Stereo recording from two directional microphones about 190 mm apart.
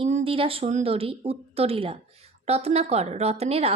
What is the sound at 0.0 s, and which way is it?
A woman's voice, 30° right (ahead or behind).